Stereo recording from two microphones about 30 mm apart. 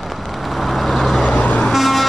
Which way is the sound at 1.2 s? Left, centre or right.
Left.